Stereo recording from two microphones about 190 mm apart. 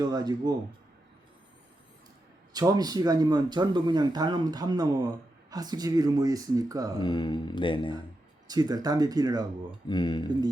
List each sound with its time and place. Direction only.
0.0 s speech: 20° right (ahead or behind)
2.5 s speech: 20° right (ahead or behind)
7.0 s mantra: 20° left (ahead or behind)
8.4 s speech: 20° right (ahead or behind)
9.9 s mantra: 20° left (ahead or behind)